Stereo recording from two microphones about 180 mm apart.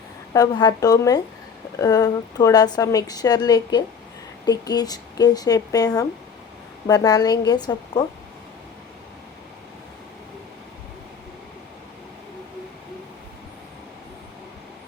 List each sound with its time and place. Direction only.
0.3 s a woman's voice: 20° left (ahead or behind)